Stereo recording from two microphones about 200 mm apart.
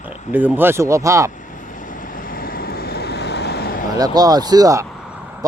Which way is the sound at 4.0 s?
20° right (ahead or behind).